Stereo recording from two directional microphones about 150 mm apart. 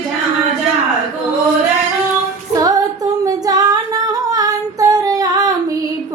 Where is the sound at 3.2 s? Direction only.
25° right (ahead or behind).